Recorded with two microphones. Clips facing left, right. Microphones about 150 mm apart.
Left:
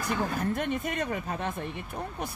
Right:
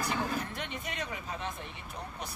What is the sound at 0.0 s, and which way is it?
Speech, 50° left (ahead or behind).